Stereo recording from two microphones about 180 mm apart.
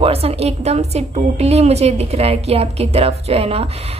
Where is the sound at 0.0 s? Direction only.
35° right (ahead or behind).